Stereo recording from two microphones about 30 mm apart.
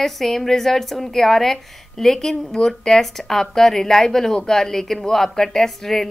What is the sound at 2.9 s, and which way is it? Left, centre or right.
A woman's voice, centre.